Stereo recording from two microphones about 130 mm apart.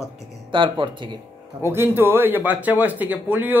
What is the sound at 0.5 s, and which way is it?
Speech, 40° right (ahead or behind).